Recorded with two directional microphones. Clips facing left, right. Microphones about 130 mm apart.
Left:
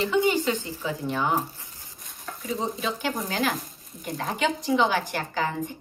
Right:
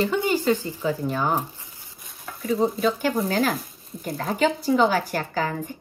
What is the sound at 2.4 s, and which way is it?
A woman's voice, 45° right (ahead or behind).